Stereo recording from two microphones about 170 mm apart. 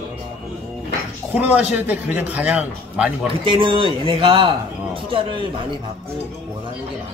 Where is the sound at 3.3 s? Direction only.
30° right (ahead or behind).